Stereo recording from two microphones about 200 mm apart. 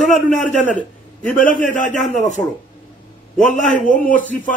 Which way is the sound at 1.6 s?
40° left (ahead or behind).